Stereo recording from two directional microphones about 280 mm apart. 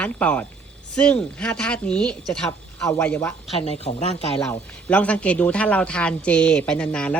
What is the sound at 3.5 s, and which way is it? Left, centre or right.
Speech, left.